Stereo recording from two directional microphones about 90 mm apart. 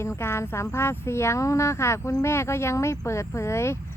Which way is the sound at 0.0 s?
30° left (ahead or behind).